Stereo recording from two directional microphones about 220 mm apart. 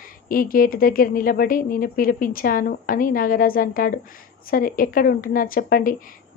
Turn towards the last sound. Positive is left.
turn(degrees=40)  # may be behind; listen again after turning